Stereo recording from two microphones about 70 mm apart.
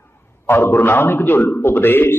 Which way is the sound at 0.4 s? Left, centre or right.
Left.